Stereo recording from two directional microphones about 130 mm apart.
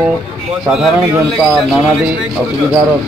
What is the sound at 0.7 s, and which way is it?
Speech, 5° right (ahead or behind).